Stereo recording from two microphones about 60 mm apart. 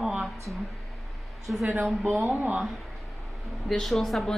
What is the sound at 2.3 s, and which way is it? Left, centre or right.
Speech, right.